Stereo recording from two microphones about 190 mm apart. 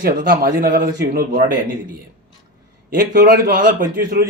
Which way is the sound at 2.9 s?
45° right (ahead or behind).